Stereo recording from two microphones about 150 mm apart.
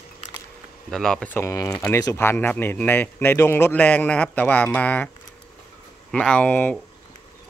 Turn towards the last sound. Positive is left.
turn(degrees=10)  # may be behind; listen again after turning